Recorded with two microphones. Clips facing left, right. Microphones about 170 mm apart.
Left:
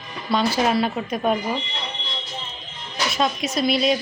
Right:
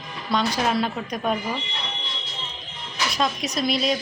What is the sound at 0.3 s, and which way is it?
A woman's voice, 5° left (ahead or behind).